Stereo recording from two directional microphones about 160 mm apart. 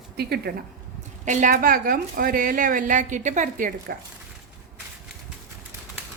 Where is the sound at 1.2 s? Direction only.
50° right (ahead or behind).